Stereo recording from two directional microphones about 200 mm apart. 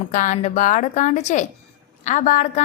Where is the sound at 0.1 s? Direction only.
40° left (ahead or behind).